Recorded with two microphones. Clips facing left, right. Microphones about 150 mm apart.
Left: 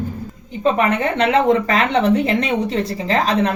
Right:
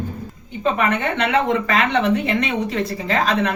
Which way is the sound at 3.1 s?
35° left (ahead or behind).